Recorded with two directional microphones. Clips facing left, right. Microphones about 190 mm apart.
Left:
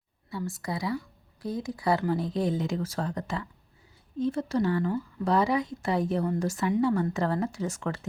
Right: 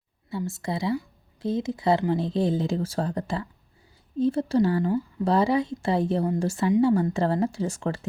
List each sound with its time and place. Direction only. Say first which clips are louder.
0.3 s speech: right 3 dB; 25° right (ahead or behind)